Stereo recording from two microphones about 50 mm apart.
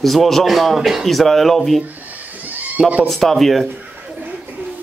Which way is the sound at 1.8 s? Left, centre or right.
Right.